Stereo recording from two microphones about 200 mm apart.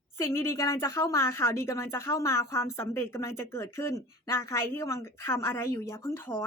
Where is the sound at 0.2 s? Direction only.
10° left (ahead or behind).